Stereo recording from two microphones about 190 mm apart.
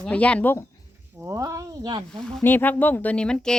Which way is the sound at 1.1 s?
15° right (ahead or behind).